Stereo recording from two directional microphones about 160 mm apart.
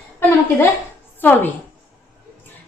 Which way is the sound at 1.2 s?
10° left (ahead or behind).